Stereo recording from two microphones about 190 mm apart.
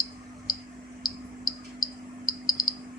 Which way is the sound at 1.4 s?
20° left (ahead or behind).